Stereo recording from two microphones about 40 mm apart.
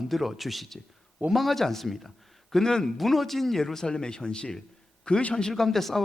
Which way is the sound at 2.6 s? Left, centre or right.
Centre.